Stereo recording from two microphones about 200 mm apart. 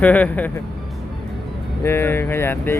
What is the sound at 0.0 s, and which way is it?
Speech, 10° left (ahead or behind).